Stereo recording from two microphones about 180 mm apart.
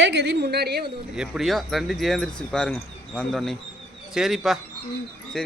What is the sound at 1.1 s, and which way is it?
A man's voice, 5° right (ahead or behind).